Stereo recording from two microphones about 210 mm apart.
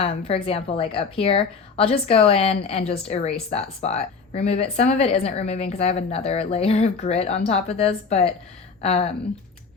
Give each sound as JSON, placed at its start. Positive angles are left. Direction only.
{"t": 0.0, "sound": "speech", "side_deg": 25}